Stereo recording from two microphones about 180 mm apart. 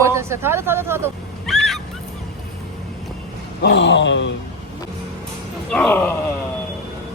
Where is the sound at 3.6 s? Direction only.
75° left (ahead or behind).